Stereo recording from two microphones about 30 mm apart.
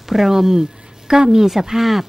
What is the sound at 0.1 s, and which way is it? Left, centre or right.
Speech, centre.